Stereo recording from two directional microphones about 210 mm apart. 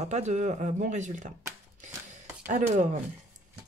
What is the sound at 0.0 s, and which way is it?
Speech, 35° right (ahead or behind).